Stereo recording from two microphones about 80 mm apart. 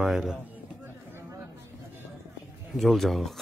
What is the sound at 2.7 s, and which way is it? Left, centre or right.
Speech, centre.